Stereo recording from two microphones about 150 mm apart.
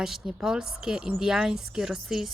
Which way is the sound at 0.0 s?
Centre (ahead or behind).